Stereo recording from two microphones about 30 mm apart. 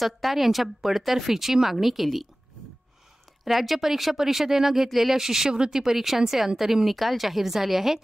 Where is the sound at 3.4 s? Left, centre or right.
Centre.